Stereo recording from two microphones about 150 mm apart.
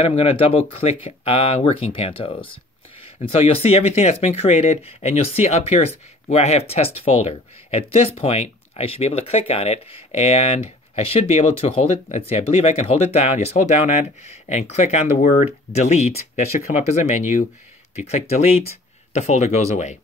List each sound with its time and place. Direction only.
0.0 s speech: 40° left (ahead or behind)